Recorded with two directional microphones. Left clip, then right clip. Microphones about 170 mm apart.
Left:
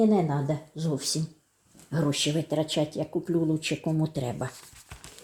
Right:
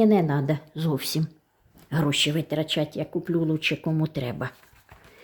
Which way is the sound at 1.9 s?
10° right (ahead or behind).